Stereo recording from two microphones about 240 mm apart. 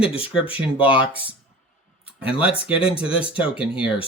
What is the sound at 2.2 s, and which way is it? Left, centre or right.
Speech, left.